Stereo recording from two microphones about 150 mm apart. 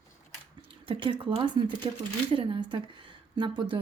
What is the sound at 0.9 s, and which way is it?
Speech, 35° right (ahead or behind).